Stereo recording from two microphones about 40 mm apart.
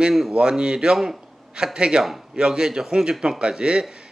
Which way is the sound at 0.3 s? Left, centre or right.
Right.